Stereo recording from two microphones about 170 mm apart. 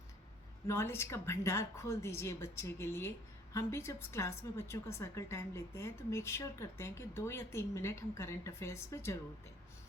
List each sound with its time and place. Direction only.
0.7 s a woman's voice: 15° left (ahead or behind)